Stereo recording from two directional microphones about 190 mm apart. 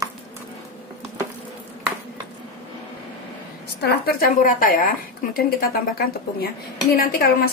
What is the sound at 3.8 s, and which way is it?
Speech, 50° left (ahead or behind).